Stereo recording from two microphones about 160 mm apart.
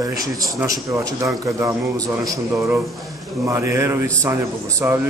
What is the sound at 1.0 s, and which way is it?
Speech, 20° right (ahead or behind).